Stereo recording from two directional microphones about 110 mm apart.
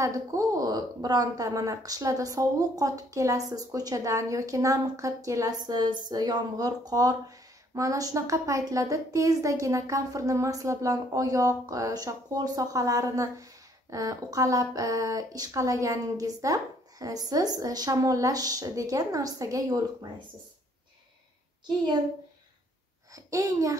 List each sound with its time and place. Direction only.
0.0 s a woman's voice: 30° right (ahead or behind)
23.1 s a woman's voice: 30° right (ahead or behind)